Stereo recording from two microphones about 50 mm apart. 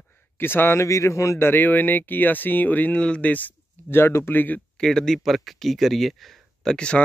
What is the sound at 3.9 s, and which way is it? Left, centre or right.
Speech, left.